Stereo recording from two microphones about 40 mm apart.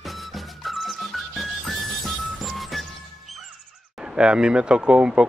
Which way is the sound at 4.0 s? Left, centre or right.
Right.